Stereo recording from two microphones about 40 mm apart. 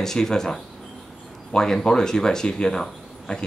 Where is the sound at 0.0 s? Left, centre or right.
Centre.